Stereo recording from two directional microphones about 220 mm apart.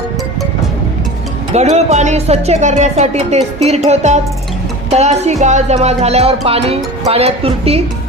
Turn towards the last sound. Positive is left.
turn(degrees=-25)  # may be behind; listen again after turning